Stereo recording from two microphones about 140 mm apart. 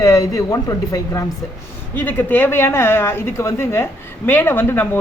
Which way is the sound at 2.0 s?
15° left (ahead or behind).